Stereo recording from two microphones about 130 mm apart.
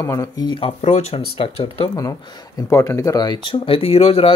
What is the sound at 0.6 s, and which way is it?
Speech, 60° left (ahead or behind).